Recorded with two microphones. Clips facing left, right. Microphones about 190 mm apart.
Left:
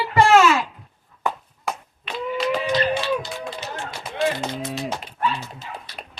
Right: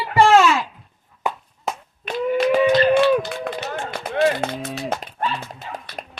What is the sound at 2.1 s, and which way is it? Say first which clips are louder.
Speech: right 5 dB; 50° right (ahead or behind).